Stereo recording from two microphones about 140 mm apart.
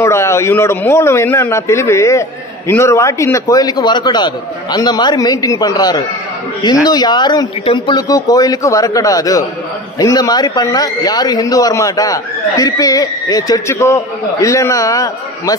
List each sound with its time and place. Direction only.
0.0 s a man's voice: 20° left (ahead or behind)